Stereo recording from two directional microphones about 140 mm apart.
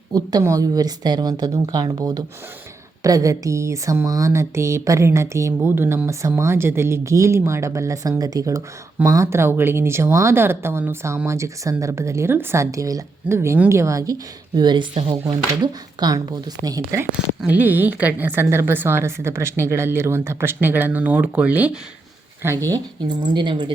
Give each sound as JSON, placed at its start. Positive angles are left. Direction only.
{"t": 0.1, "sound": "speech", "side_deg": -30}
{"t": 17.4, "sound": "a woman's voice", "side_deg": -10}
{"t": 22.4, "sound": "speech", "side_deg": -20}